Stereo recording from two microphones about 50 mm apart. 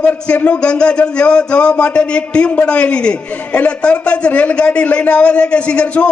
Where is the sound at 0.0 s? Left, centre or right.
Left.